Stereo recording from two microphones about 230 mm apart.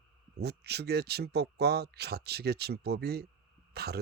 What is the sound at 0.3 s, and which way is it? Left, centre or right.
A man's voice, right.